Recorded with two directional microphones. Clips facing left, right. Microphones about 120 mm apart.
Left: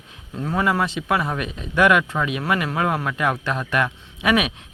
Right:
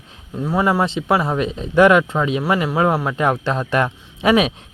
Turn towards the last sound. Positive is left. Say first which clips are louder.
# right 5 dB
turn(degrees=-30)  # may be behind; listen again after turning